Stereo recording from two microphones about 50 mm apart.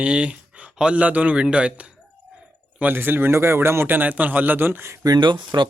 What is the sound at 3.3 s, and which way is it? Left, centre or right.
Speech, right.